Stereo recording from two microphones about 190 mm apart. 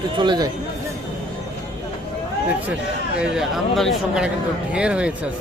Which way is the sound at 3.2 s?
Centre (ahead or behind).